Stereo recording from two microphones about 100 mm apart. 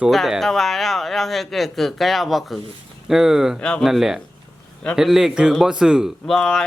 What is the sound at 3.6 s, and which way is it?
Speech, 10° left (ahead or behind).